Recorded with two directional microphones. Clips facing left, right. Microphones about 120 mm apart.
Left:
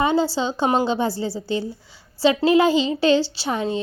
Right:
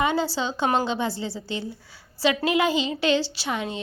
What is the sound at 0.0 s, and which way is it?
A woman's voice, 30° left (ahead or behind).